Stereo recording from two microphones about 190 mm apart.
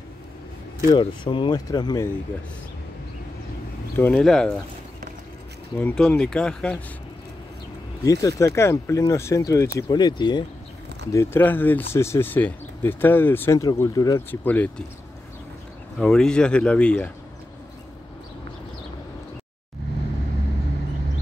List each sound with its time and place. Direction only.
0.9 s speech: 25° left (ahead or behind)
3.9 s speech: 5° left (ahead or behind)
5.8 s speech: 5° left (ahead or behind)
8.0 s speech: 20° left (ahead or behind)
11.1 s speech: 10° left (ahead or behind)
16.0 s speech: 5° left (ahead or behind)